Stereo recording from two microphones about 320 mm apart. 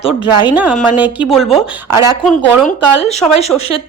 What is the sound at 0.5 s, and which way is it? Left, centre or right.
A woman's voice, centre.